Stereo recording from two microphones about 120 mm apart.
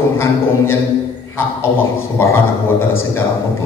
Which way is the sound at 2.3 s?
20° left (ahead or behind).